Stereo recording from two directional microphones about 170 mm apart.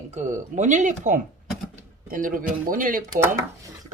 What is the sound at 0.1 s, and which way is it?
Speech, 45° right (ahead or behind).